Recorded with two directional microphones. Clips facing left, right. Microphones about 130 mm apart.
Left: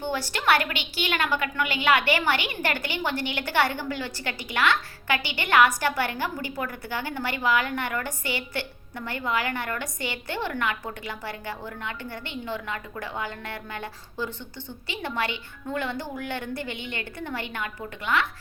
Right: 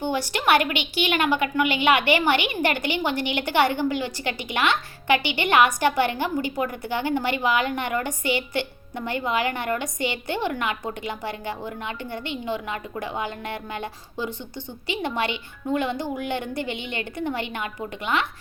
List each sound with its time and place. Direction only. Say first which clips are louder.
0.0 s a woman's voice: right 3 dB; 15° right (ahead or behind)